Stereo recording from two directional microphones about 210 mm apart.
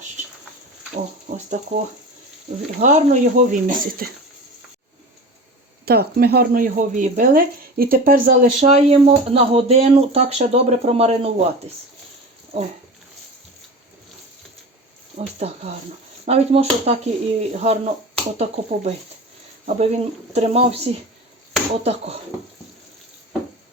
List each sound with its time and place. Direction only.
1.3 s speech: 35° right (ahead or behind)
2.7 s speech: 35° right (ahead or behind)
5.8 s speech: 50° right (ahead or behind); by 11.4 s 30° right (ahead or behind)
15.2 s speech: 30° right (ahead or behind)